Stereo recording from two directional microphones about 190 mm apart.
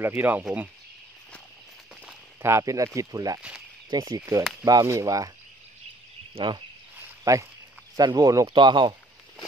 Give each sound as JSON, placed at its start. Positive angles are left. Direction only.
{"t": 0.0, "sound": "speech", "side_deg": -10}
{"t": 2.0, "sound": "speech", "side_deg": -15}
{"t": 6.3, "sound": "speech", "side_deg": -25}